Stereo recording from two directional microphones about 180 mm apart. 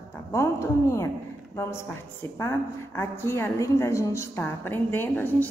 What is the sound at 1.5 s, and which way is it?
A woman's voice, 15° left (ahead or behind).